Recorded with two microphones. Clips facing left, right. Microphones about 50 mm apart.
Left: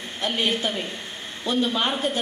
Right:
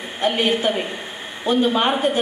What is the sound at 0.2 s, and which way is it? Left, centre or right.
A woman's voice, centre.